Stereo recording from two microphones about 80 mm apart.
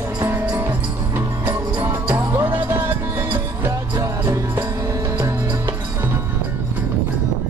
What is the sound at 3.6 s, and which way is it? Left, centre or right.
Music, right.